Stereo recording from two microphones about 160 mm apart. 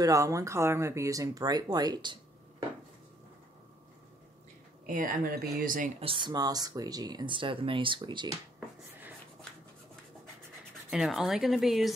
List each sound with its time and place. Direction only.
0.0 s speech: 20° right (ahead or behind)
4.8 s speech: 60° right (ahead or behind)
5.9 s speech: 30° right (ahead or behind)
10.9 s speech: centre (ahead or behind)